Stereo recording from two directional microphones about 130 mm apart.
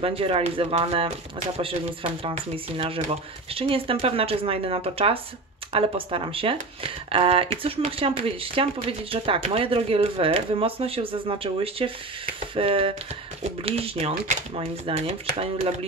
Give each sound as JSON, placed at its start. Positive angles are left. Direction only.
{"t": 0.0, "sound": "speech", "side_deg": -45}
{"t": 2.2, "sound": "speech", "side_deg": -45}